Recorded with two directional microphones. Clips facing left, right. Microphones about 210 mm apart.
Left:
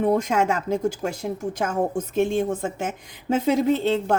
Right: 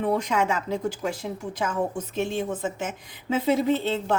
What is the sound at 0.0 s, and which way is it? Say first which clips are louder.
A woman's voice: left 4 dB; 45° left (ahead or behind).